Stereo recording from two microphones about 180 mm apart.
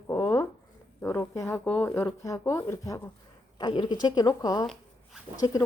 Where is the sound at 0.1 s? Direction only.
15° left (ahead or behind).